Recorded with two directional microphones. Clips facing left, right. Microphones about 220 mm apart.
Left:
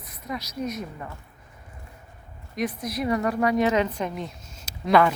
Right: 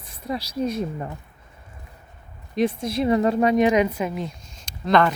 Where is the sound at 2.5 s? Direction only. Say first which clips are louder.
Right 6 dB; 25° right (ahead or behind); by 5.1 s 10° left (ahead or behind).